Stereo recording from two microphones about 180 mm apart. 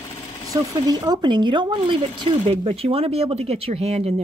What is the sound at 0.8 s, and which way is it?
Speech, 20° right (ahead or behind).